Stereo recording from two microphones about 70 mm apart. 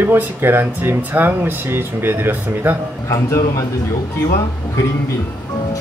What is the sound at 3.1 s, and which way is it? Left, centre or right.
Speech, left.